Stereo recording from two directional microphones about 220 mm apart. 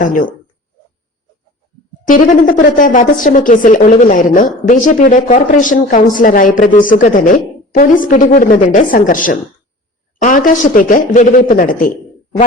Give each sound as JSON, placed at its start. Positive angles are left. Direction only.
{"t": 0.0, "sound": "a woman's voice", "side_deg": 35}
{"t": 2.0, "sound": "a woman's voice", "side_deg": 35}